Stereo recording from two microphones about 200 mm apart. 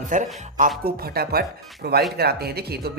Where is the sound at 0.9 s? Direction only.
50° right (ahead or behind).